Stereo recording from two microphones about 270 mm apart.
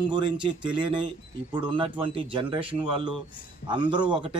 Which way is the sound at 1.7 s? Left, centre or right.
Centre.